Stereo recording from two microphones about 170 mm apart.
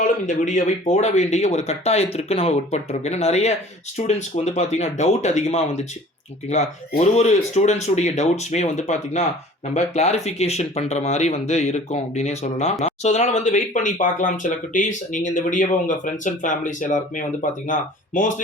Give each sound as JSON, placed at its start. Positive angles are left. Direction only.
{"t": 0.0, "sound": "speech", "side_deg": 45}